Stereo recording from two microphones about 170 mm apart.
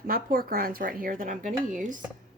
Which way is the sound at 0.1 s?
55° right (ahead or behind).